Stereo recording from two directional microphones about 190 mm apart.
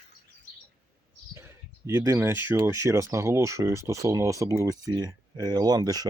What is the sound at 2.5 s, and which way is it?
Speech, 15° right (ahead or behind).